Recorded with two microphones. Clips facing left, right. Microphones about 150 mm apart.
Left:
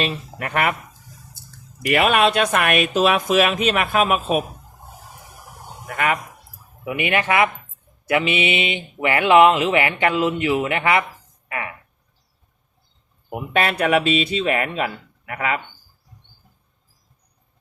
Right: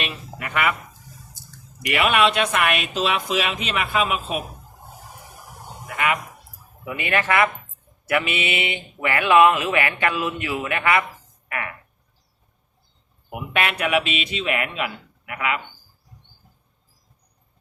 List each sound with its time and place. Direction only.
0.0 s speech: 40° left (ahead or behind)
1.9 s speech: 40° left (ahead or behind)
6.8 s speech: 20° left (ahead or behind)
11.4 s a sound: 25° left (ahead or behind)
13.3 s speech: 35° left (ahead or behind)